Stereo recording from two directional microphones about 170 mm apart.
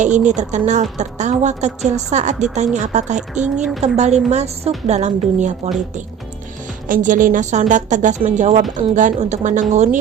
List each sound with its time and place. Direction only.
0.3 s a woman's voice: 45° right (ahead or behind)
3.3 s speech: 5° right (ahead or behind)
3.8 s a woman's voice: 40° right (ahead or behind)
6.8 s a woman's voice: 50° right (ahead or behind)